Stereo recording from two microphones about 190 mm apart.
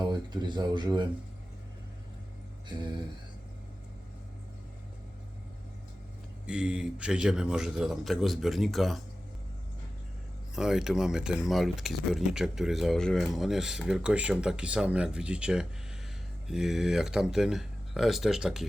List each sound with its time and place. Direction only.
0.1 s speech: 25° right (ahead or behind)
6.5 s speech: 5° right (ahead or behind)
10.5 s speech: centre (ahead or behind)